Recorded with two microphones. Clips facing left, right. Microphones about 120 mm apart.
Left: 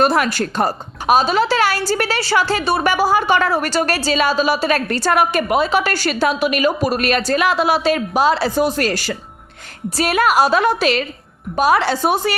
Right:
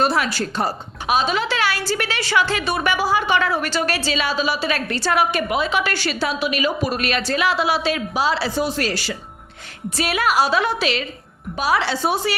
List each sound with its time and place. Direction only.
0.0 s a woman's voice: 50° left (ahead or behind)